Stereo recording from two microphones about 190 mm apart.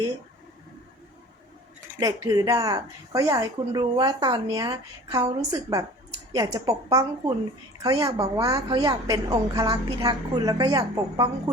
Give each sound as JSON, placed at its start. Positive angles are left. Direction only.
{"t": 2.0, "sound": "a woman's voice", "side_deg": -20}